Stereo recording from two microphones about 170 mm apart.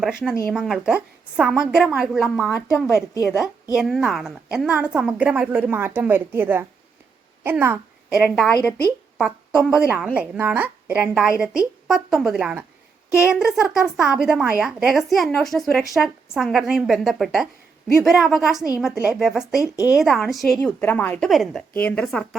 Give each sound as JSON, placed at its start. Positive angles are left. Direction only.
{"t": 0.0, "sound": "a woman's voice", "side_deg": -5}
{"t": 2.5, "sound": "a woman's voice", "side_deg": 15}
{"t": 2.7, "sound": "a woman's voice", "side_deg": 0}
{"t": 8.4, "sound": "a woman's voice", "side_deg": 5}
{"t": 19.6, "sound": "speech", "side_deg": 20}
{"t": 19.9, "sound": "a woman's voice", "side_deg": 0}